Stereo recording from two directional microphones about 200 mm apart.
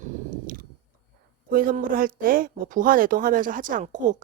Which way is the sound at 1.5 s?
45° right (ahead or behind).